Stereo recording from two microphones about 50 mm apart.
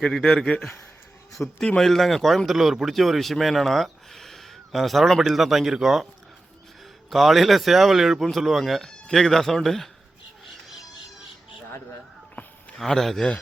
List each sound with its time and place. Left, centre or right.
0.3 s speech: centre
7.1 s speech: centre
12.4 s a sound: left
12.7 s speech: centre